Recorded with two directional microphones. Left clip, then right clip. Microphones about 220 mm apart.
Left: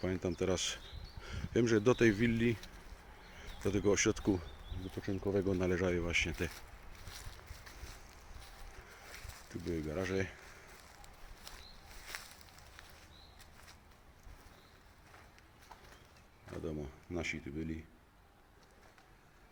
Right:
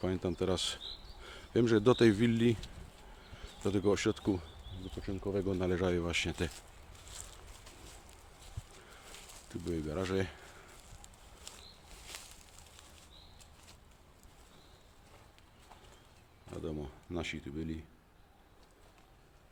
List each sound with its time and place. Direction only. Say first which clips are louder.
0.0 s speech: right 2 dB; 10° right (ahead or behind)
3.7 s speech: even; 10° right (ahead or behind)
9.7 s speech: right 2 dB; 15° right (ahead or behind)
11.5 s a sound: right 1 dB; 10° left (ahead or behind)
16.6 s speech: right 1 dB; 5° right (ahead or behind)